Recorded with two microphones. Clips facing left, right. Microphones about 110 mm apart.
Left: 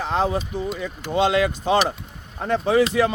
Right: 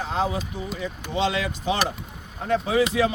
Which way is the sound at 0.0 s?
65° left (ahead or behind).